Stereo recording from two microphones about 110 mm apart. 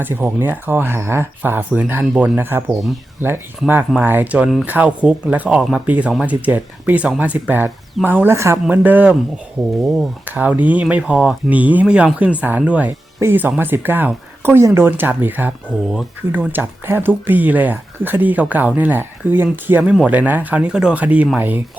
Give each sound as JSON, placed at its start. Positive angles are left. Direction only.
{"t": 0.0, "sound": "speech", "side_deg": -20}
{"t": 10.2, "sound": "speech", "side_deg": -15}